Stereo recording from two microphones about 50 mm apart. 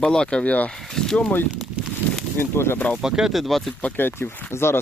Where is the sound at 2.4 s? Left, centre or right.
Left.